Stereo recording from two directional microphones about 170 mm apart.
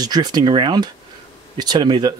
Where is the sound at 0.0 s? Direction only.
25° right (ahead or behind).